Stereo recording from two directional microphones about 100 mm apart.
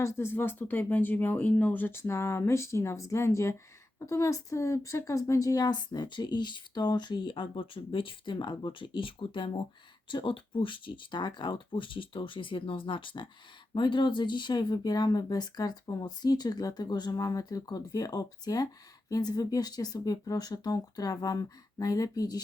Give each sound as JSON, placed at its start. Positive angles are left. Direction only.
{"t": 0.0, "sound": "a woman's voice", "side_deg": 25}